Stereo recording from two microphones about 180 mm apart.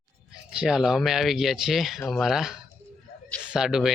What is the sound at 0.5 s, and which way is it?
Speech, 5° right (ahead or behind).